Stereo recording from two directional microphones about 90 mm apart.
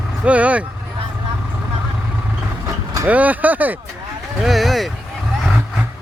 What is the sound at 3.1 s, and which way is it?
Speech, 15° right (ahead or behind).